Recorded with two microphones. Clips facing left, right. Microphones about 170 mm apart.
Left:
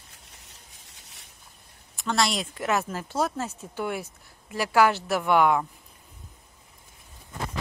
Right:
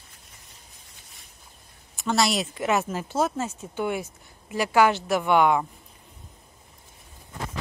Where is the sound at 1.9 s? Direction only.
5° right (ahead or behind).